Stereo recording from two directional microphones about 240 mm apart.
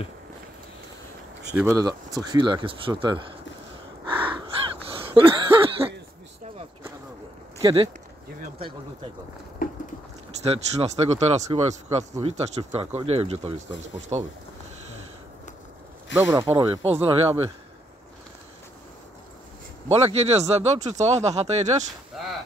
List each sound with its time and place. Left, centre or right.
1.5 s speech: centre
1.8 s speech: centre
4.8 s a sound: right
7.6 s speech: right
9.6 s a sound: left
10.4 s speech: right
16.2 s speech: centre
19.9 s speech: right
22.1 s a sound: centre